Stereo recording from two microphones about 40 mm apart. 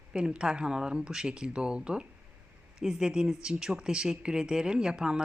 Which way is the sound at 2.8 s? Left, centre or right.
Centre.